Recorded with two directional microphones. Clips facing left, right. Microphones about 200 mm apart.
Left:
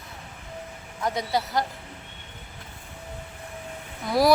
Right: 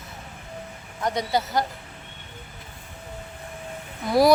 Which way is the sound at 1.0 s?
Centre (ahead or behind).